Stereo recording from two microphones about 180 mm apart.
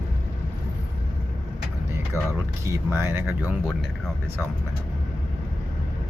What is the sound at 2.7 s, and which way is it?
Speech, 15° right (ahead or behind).